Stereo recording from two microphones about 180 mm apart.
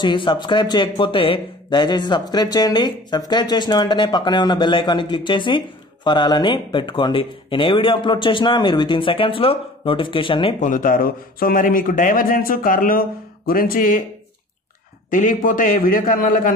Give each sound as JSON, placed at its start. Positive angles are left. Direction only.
{"t": 0.0, "sound": "speech", "side_deg": 25}
{"t": 10.6, "sound": "speech", "side_deg": 45}
{"t": 15.0, "sound": "speech", "side_deg": 45}